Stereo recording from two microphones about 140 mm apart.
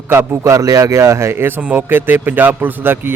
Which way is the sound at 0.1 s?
15° right (ahead or behind).